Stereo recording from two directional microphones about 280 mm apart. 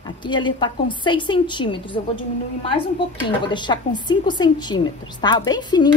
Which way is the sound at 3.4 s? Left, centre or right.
Centre.